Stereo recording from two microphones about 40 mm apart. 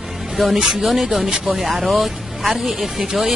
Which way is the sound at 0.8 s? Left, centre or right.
Centre.